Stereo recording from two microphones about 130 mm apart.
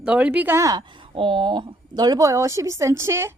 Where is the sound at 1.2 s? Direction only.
40° right (ahead or behind).